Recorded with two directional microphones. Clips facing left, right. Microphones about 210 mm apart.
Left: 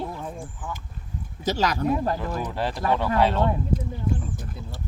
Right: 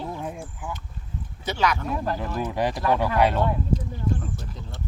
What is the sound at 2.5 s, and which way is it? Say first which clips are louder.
Speech: right 3 dB; 15° right (ahead or behind).